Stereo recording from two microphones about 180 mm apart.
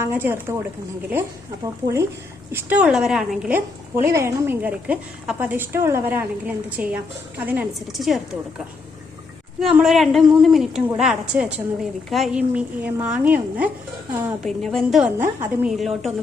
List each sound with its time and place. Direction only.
0.0 s a woman's voice: 10° right (ahead or behind)
1.6 s a woman's voice: 15° right (ahead or behind)
4.0 s a woman's voice: 15° right (ahead or behind)
9.6 s a woman's voice: centre (ahead or behind)
14.4 s a woman's voice: centre (ahead or behind)